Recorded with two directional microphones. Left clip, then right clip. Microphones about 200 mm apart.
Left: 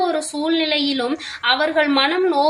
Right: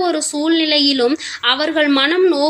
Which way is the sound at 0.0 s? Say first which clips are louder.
Right 3 dB; 40° right (ahead or behind).